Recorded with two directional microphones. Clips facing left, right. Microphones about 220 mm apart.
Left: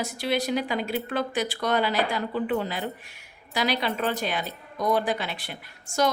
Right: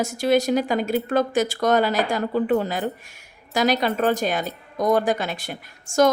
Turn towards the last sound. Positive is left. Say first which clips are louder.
# right 7 dB
turn(degrees=-45)  # may be behind; listen again after turning